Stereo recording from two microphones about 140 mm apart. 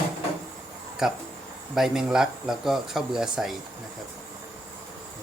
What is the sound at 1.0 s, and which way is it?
Speech, 5° right (ahead or behind).